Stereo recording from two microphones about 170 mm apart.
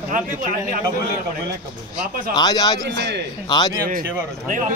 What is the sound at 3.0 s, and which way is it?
Speech, 80° right.